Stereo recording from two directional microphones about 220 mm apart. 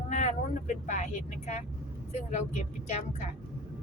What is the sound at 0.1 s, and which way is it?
Vehicle, 30° left (ahead or behind).